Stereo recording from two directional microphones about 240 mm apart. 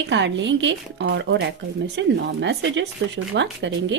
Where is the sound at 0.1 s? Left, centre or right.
Right.